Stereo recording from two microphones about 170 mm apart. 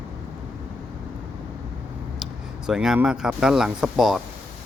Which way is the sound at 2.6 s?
5° right (ahead or behind).